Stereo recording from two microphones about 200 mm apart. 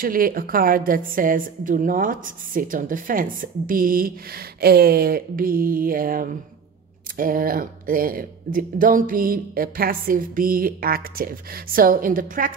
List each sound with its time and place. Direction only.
0.0 s a woman's voice: 45° right (ahead or behind)